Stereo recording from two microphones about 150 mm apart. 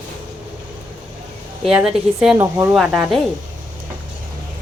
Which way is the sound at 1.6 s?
5° right (ahead or behind).